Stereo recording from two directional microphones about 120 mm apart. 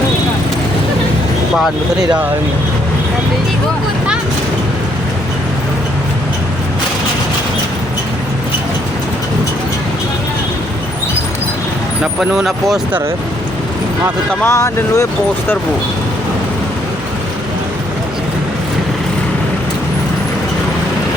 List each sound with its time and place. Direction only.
1.5 s speech: centre (ahead or behind)
12.2 s speech: 5° right (ahead or behind)
14.4 s speech: 25° left (ahead or behind)